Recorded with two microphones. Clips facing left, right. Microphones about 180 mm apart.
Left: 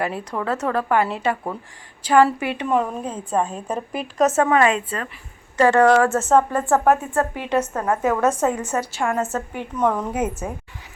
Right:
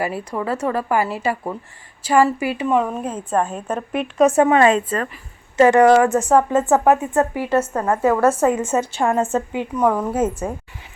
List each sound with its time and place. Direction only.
0.0 s a woman's voice: 5° right (ahead or behind)
4.5 s a woman's voice: 35° right (ahead or behind)
5.5 s a woman's voice: 20° right (ahead or behind)
8.5 s a woman's voice: 25° right (ahead or behind)
9.5 s a woman's voice: 15° right (ahead or behind)
10.2 s a woman's voice: 10° left (ahead or behind)